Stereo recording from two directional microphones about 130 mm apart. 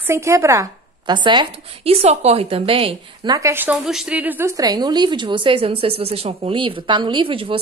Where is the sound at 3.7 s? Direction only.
5° right (ahead or behind); by 7.6 s 45° right (ahead or behind).